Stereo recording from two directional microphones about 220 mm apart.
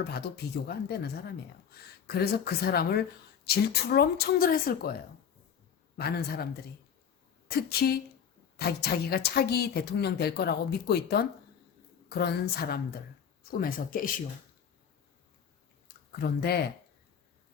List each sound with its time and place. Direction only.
0.0 s a woman's voice: 50° left (ahead or behind)
6.0 s a woman's voice: 45° left (ahead or behind)
16.4 s a woman's voice: 45° left (ahead or behind)